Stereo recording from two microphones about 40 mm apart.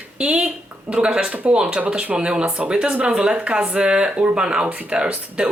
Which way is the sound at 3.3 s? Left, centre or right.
Right.